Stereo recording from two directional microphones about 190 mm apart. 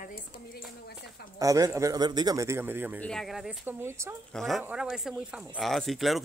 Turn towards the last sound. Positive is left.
turn(degrees=0)  # may be behind; listen again after turning